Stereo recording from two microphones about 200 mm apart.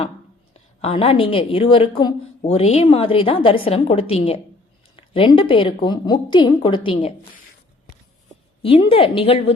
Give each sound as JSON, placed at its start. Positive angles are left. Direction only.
{"t": 0.8, "sound": "a woman's voice", "side_deg": 30}
{"t": 8.6, "sound": "a woman's voice", "side_deg": 30}